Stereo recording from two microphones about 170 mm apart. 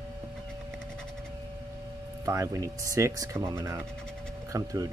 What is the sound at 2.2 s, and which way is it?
Speech, 20° right (ahead or behind).